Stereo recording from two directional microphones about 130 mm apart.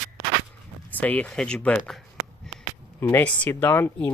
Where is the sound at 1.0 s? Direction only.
10° left (ahead or behind).